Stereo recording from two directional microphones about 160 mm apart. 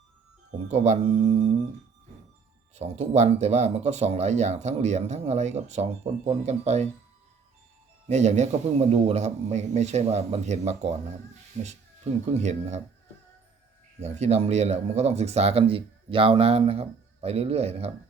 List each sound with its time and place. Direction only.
0.7 s speech: 40° right (ahead or behind)
2.7 s speech: 45° right (ahead or behind)
8.0 s speech: 45° right (ahead or behind)
14.0 s speech: 45° right (ahead or behind)